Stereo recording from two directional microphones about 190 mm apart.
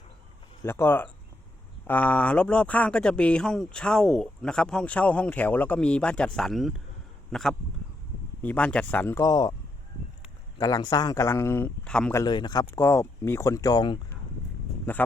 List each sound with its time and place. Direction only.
0.6 s speech: 10° left (ahead or behind)
10.6 s speech: 20° left (ahead or behind)
12.1 s speech: 25° left (ahead or behind)
14.9 s speech: 10° left (ahead or behind)